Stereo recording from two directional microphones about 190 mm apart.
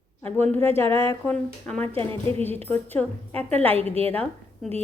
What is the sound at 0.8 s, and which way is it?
Speech, 25° right (ahead or behind).